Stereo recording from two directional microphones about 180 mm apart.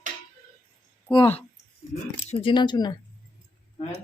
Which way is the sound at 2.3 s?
35° left (ahead or behind).